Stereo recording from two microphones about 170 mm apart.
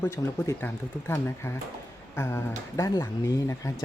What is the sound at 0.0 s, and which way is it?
Speech, 15° left (ahead or behind).